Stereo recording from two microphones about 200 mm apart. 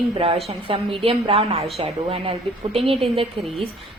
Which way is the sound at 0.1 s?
30° right (ahead or behind).